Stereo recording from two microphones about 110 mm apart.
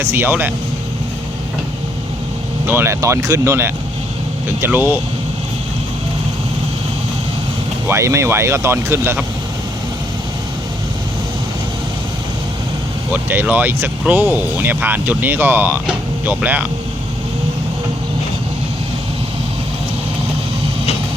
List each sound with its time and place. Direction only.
0.0 s speech: 20° right (ahead or behind)
2.6 s speech: 20° right (ahead or behind)
7.9 s speech: 25° right (ahead or behind)
13.1 s speech: 15° right (ahead or behind)